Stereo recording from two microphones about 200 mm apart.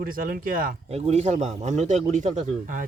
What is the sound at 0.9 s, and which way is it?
A man's voice, 30° right (ahead or behind).